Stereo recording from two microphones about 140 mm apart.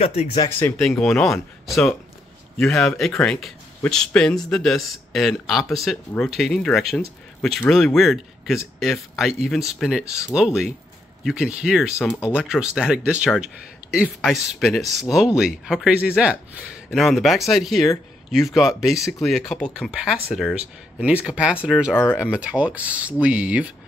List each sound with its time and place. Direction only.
0.0 s speech: 50° left (ahead or behind)
0.5 s speech: 15° left (ahead or behind)
0.7 s speech: centre (ahead or behind)